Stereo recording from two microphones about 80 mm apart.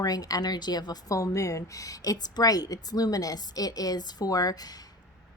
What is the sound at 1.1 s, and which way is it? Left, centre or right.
A woman's voice, left.